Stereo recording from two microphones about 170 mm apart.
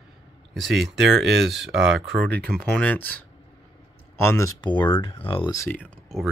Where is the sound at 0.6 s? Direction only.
Centre (ahead or behind).